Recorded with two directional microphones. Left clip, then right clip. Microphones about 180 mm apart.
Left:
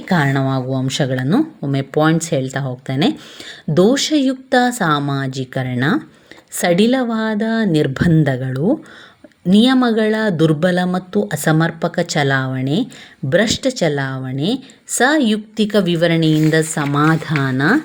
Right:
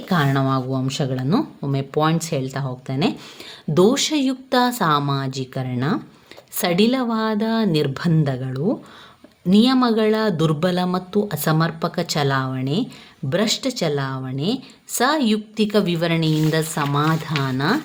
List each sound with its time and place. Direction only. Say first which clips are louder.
0.1 s a woman's voice: left 3 dB; 25° left (ahead or behind)
3.8 s a woman's voice: left 3 dB; 15° left (ahead or behind)